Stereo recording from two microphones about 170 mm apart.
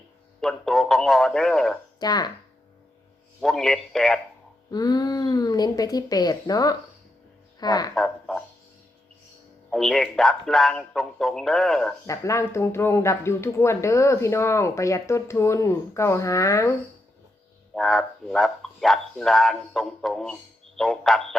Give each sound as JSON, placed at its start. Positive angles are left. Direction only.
{"t": 0.4, "sound": "speech", "side_deg": 0}
{"t": 2.0, "sound": "speech", "side_deg": 25}
{"t": 3.4, "sound": "speech", "side_deg": 5}
{"t": 4.7, "sound": "speech", "side_deg": 25}
{"t": 7.9, "sound": "a sound", "side_deg": 5}
{"t": 9.7, "sound": "speech", "side_deg": 0}
{"t": 12.0, "sound": "speech", "side_deg": 15}
{"t": 17.7, "sound": "speech", "side_deg": 5}